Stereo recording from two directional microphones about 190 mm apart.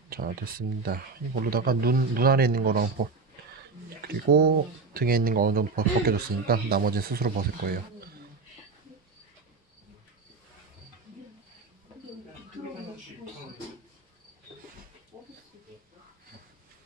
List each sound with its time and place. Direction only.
0.1 s speech: 50° right (ahead or behind)
4.0 s speech: 55° right (ahead or behind)
15.1 s a sound: 25° right (ahead or behind)